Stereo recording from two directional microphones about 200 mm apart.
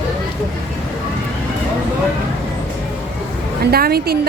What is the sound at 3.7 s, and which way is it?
Speech, 50° right (ahead or behind).